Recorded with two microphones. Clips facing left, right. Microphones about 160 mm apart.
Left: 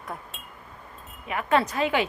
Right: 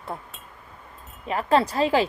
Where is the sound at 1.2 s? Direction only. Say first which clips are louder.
Right 3 dB; 30° right (ahead or behind).